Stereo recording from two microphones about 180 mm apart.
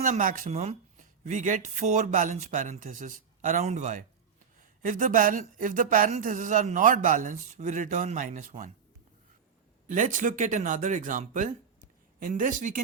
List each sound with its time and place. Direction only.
0.0 s speech: 45° right (ahead or behind)
9.9 s speech: 45° right (ahead or behind)